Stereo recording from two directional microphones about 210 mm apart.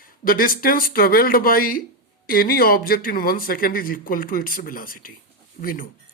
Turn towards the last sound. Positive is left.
turn(degrees=40)  # may be behind; listen again after turning